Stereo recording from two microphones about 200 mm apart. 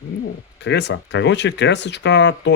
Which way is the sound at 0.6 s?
60° left (ahead or behind).